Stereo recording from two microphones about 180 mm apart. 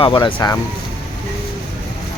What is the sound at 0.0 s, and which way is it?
Speech, 30° left (ahead or behind).